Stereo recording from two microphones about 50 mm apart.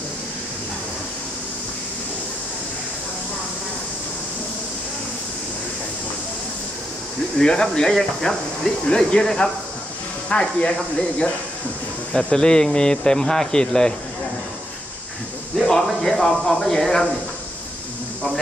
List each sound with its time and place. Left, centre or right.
7.3 s speech: centre
15.5 s speech: centre